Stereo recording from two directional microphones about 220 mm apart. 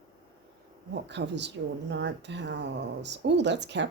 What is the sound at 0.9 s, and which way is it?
Speech, 50° right (ahead or behind).